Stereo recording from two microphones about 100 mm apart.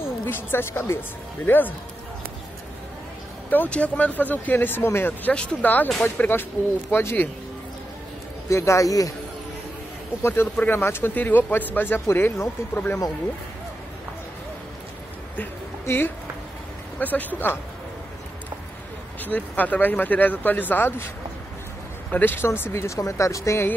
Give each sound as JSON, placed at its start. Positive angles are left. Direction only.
{"t": 0.2, "sound": "speech", "side_deg": 25}
{"t": 3.4, "sound": "speech", "side_deg": 15}
{"t": 5.3, "sound": "speech", "side_deg": 10}
{"t": 8.5, "sound": "speech", "side_deg": 30}
{"t": 10.2, "sound": "speech", "side_deg": 25}
{"t": 15.3, "sound": "a sound", "side_deg": 20}
{"t": 17.0, "sound": "speech", "side_deg": 15}
{"t": 19.2, "sound": "speech", "side_deg": 15}
{"t": 22.1, "sound": "speech", "side_deg": 20}